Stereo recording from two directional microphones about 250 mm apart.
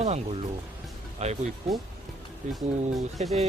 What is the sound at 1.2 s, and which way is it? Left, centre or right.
Speech, right.